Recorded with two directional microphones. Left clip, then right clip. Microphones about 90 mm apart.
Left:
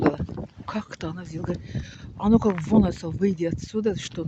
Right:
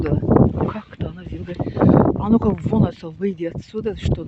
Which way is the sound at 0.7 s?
30° left (ahead or behind).